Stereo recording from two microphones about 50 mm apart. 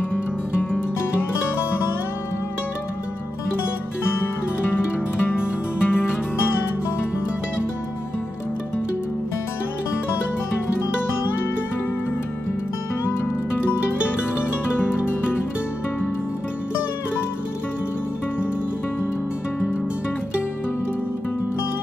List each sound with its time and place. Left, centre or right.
4.1 s music: left